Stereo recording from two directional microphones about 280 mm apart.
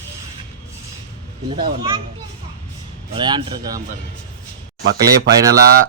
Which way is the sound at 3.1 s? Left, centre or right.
Centre.